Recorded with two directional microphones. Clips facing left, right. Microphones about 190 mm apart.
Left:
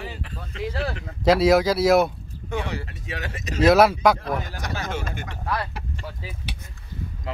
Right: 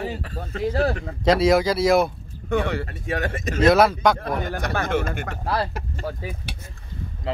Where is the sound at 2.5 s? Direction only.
55° right (ahead or behind).